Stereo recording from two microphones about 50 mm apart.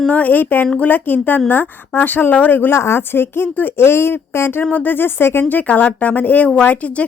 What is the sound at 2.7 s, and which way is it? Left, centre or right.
Speech, left.